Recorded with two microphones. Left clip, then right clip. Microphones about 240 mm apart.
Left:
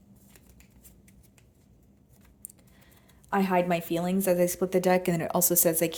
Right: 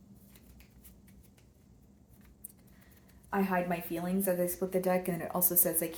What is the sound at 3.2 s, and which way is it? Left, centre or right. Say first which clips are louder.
A woman's voice: left 6 dB; left.